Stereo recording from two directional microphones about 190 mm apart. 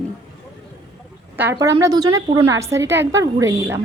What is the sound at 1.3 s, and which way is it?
A woman's voice, 15° right (ahead or behind).